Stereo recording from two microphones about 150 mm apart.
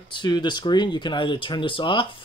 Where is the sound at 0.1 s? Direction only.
30° left (ahead or behind).